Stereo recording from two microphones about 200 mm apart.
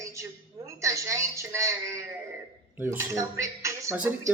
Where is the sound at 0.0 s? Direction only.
15° right (ahead or behind).